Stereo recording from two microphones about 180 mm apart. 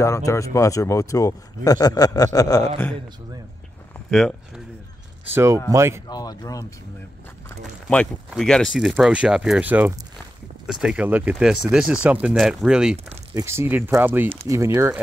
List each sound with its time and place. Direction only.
0.0 s speech: 15° left (ahead or behind)
5.3 s speech: 15° right (ahead or behind)
6.0 s speech: 20° left (ahead or behind)
7.6 s speech: centre (ahead or behind)
13.3 s speech: 15° right (ahead or behind)